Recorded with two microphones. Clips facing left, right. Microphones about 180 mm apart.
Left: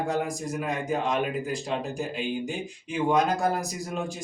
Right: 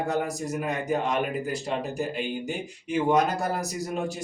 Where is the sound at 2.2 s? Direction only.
5° right (ahead or behind).